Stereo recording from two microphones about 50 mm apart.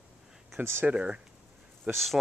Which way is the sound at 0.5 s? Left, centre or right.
Right.